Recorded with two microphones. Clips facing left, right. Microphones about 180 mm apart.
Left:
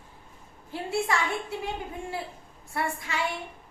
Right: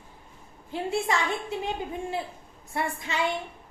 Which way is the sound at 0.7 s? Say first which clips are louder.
Right 1 dB; 20° right (ahead or behind).